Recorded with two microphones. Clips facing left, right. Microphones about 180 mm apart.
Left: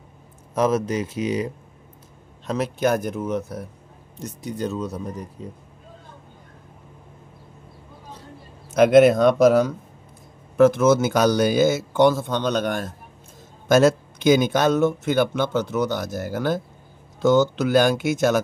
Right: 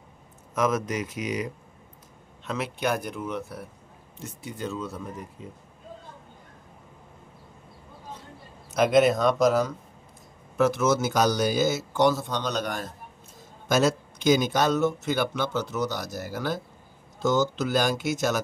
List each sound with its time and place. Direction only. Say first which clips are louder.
0.6 s a man's voice: left 5 dB; 30° left (ahead or behind)
8.6 s a man's voice: left 7 dB; 55° left (ahead or behind)